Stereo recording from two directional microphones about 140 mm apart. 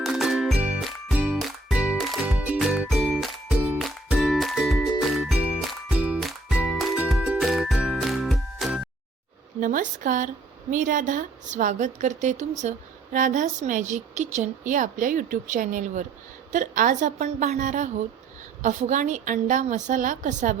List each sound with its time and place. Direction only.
0.0 s music: centre (ahead or behind)
9.6 s a woman's voice: 65° right (ahead or behind)